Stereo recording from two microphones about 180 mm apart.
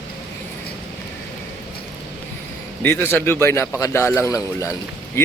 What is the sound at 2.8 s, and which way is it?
A man's voice, 10° left (ahead or behind).